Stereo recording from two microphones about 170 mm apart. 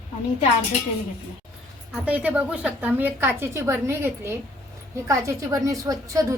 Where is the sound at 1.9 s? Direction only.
10° right (ahead or behind).